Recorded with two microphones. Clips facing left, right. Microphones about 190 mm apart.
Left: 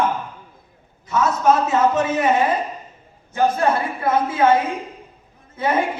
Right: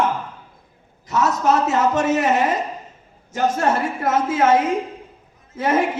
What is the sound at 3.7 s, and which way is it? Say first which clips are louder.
A man's voice: even; 90° right.